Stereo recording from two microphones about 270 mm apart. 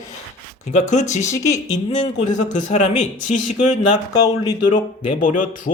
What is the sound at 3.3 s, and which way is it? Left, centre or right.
Speech, left.